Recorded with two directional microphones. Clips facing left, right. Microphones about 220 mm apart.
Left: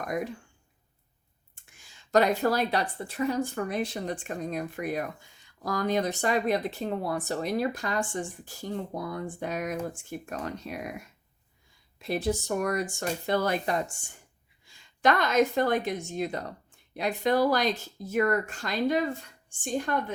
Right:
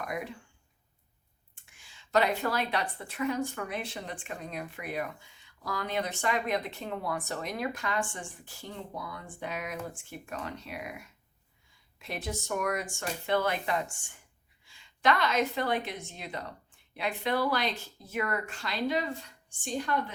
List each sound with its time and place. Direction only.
0.0 s speech: 45° left (ahead or behind)
1.7 s a woman's voice: 45° left (ahead or behind)